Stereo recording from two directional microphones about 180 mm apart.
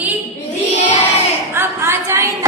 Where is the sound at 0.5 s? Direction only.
40° left (ahead or behind).